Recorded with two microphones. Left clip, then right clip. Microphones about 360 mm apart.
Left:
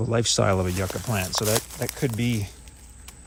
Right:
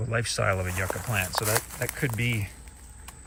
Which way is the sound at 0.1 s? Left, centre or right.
Centre.